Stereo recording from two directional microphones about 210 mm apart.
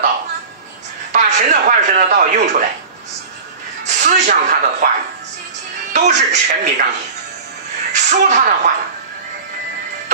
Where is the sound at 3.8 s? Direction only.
35° right (ahead or behind).